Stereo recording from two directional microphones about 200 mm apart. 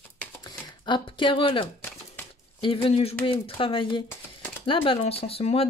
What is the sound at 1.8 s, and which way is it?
Typewriter, 10° left (ahead or behind).